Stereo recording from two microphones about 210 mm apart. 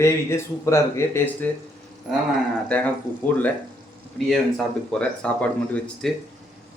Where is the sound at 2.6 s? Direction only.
5° left (ahead or behind).